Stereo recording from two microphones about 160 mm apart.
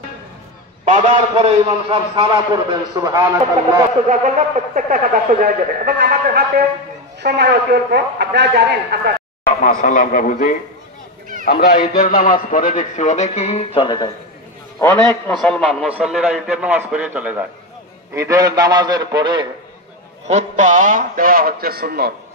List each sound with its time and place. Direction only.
0.8 s a man's voice: 50° right (ahead or behind); by 3.3 s 20° right (ahead or behind)
4.1 s speech: 50° right (ahead or behind); by 6.6 s 75° right (ahead or behind)
7.2 s a man's voice: 90° right
9.6 s a man's voice: 55° left (ahead or behind); by 14.1 s 30° left (ahead or behind)
14.8 s a man's voice: 15° left (ahead or behind)
15.3 s a man's voice: 5° left (ahead or behind); by 19.4 s 25° right (ahead or behind)
20.2 s speech: 45° right (ahead or behind); by 22.1 s 70° right (ahead or behind)